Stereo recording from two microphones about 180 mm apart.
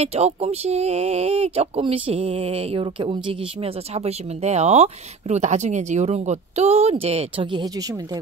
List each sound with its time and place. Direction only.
0.0 s speech: 35° right (ahead or behind)